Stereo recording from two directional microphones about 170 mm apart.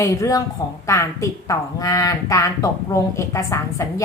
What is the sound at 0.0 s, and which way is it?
Speech, 20° left (ahead or behind).